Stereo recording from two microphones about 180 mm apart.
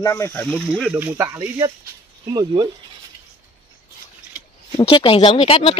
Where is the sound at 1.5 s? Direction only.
20° right (ahead or behind).